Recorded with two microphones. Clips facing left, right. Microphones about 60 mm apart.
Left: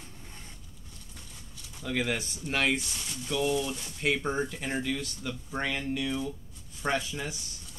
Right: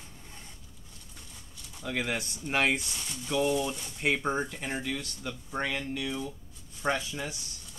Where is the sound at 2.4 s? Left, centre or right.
Centre.